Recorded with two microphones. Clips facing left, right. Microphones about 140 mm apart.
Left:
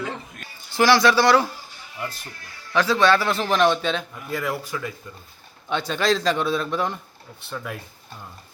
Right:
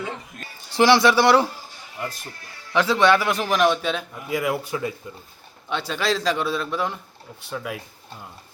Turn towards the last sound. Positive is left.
turn(degrees=-5)  # may be behind; listen again after turning